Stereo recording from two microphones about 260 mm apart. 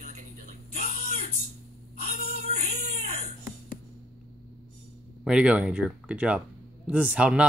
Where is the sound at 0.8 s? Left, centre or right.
Right.